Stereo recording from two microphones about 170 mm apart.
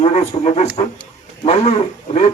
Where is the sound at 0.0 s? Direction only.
40° left (ahead or behind).